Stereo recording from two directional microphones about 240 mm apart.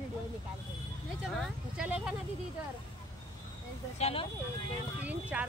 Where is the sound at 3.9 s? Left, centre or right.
Left.